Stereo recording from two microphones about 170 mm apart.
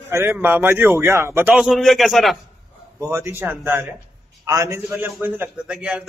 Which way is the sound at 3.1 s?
10° right (ahead or behind).